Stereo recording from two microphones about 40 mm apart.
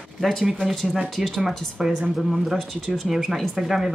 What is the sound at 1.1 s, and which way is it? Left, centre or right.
Speech, centre.